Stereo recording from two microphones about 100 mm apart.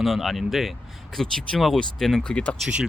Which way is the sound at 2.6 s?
5° right (ahead or behind).